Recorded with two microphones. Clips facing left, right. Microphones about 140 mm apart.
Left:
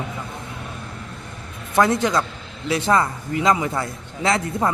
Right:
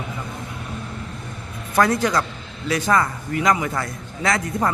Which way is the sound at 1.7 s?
25° left (ahead or behind).